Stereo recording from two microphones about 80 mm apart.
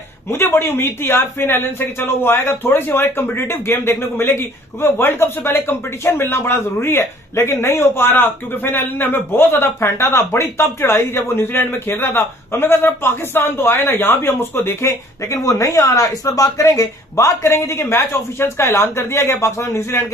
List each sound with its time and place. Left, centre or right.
0.3 s speech: left